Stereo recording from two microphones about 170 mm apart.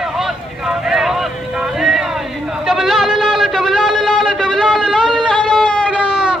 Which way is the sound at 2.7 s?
Centre (ahead or behind).